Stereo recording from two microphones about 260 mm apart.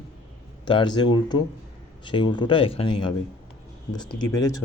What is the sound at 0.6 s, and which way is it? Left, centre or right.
Speech, centre.